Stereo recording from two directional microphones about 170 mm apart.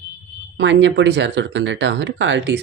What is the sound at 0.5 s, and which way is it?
Speech, 90° right.